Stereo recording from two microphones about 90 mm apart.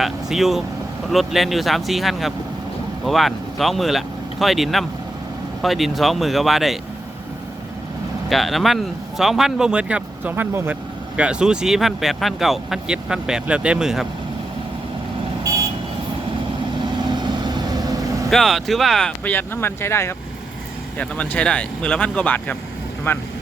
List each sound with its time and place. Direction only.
0.0 s speech: 5° right (ahead or behind)
8.3 s speech: centre (ahead or behind); by 10.8 s 20° right (ahead or behind)
11.2 s speech: 10° right (ahead or behind)
17.1 s vehicle: 55° right (ahead or behind)
18.3 s speech: 5° left (ahead or behind)
19.2 s speech: 20° left (ahead or behind)
21.0 s speech: 15° left (ahead or behind)